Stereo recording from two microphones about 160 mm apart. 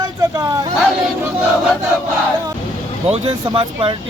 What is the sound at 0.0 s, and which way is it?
Vehicle, 25° right (ahead or behind).